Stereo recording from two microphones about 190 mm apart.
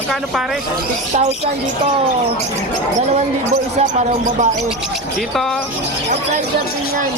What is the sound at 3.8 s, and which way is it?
Speech, 40° right (ahead or behind).